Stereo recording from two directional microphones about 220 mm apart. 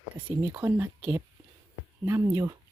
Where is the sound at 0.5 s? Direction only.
5° right (ahead or behind).